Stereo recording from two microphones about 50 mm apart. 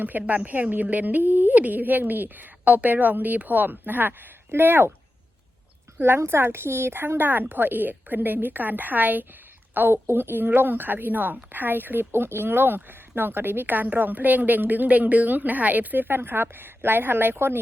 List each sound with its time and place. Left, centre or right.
0.0 s speech: right
6.0 s speech: right
9.9 s speech: right